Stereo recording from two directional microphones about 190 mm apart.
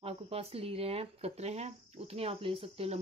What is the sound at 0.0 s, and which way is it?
Speech, 30° right (ahead or behind).